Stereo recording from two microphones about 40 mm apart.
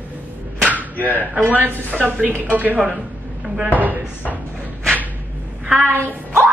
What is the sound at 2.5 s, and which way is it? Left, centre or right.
Speech, right.